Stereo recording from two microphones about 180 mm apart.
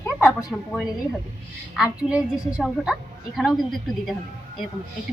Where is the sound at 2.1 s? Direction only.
5° right (ahead or behind).